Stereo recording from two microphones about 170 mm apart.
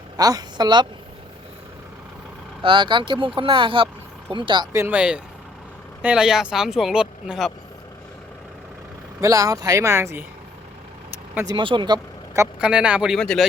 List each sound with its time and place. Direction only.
0.2 s a woman's voice: 20° right (ahead or behind)
2.6 s speech: 30° right (ahead or behind)
4.7 s speech: 10° right (ahead or behind)
9.2 s speech: 20° right (ahead or behind)
11.4 s speech: 30° right (ahead or behind)
12.5 s speech: 5° right (ahead or behind)